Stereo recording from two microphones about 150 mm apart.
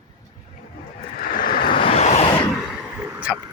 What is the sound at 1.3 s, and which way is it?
Vehicle, 60° left (ahead or behind).